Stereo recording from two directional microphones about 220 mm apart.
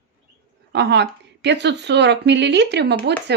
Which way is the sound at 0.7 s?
50° right (ahead or behind).